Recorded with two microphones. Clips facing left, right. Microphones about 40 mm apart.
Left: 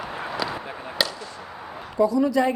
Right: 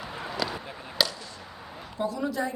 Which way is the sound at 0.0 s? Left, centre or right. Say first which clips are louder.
Left 5 dB; left.